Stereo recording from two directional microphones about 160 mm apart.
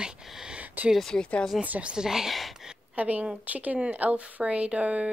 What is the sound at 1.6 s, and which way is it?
A woman's voice, 10° right (ahead or behind).